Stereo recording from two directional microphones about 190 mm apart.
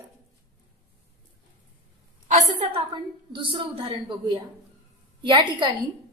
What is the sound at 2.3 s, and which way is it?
A woman's voice, 35° right (ahead or behind).